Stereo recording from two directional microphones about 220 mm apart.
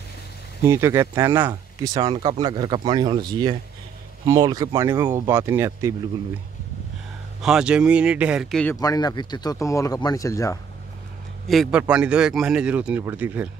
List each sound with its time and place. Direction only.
0.7 s speech: 15° right (ahead or behind)
7.4 s a man's voice: 5° right (ahead or behind)
8.7 s speech: 15° left (ahead or behind)
11.4 s a man's voice: centre (ahead or behind)